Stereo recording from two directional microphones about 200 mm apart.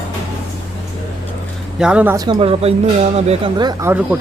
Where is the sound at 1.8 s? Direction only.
5° right (ahead or behind); by 3.9 s 20° right (ahead or behind).